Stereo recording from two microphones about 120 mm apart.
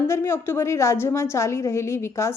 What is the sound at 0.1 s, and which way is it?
A woman's voice, 20° left (ahead or behind).